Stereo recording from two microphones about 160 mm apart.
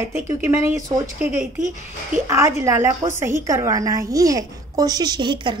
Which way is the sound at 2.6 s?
15° right (ahead or behind).